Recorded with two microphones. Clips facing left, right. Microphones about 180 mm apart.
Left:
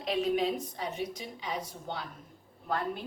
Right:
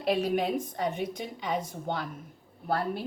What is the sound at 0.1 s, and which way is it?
A woman's voice, 45° right (ahead or behind).